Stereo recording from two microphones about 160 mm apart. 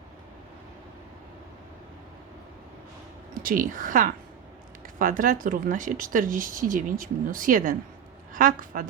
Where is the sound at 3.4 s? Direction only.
60° right (ahead or behind).